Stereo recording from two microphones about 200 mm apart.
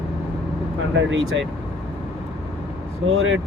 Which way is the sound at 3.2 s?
75° right (ahead or behind).